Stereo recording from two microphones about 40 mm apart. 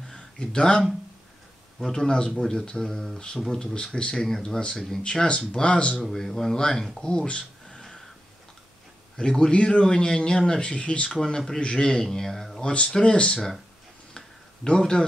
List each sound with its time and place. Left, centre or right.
0.0 s a sound: centre
1.8 s speech: centre
3.7 s speech: left
4.3 s speech: centre
5.0 s speech: left
5.9 s speech: centre
7.7 s a sound: centre
9.1 s a man's voice: centre
11.1 s speech: centre
12.5 s speech: left
14.1 s a sound: centre